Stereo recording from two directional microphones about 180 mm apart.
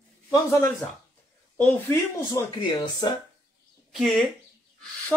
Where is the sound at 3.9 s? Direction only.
Centre (ahead or behind).